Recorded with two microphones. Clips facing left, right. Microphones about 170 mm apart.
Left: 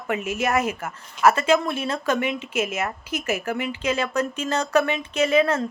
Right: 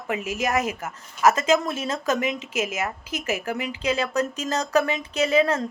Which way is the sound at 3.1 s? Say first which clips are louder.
Left 2 dB; 35° right (ahead or behind).